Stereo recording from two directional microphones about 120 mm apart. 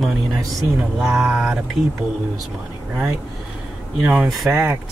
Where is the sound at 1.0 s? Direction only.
10° right (ahead or behind).